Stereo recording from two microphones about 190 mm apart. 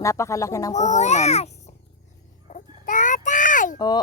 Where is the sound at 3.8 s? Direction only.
20° left (ahead or behind).